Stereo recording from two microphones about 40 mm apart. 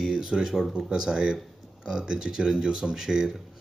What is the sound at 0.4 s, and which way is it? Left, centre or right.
Speech, centre.